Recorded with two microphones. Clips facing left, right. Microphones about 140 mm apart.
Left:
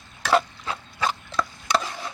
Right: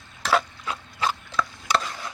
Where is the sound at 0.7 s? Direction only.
30° left (ahead or behind).